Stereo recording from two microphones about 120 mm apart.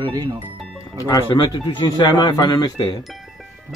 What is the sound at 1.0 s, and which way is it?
Speech, 30° left (ahead or behind).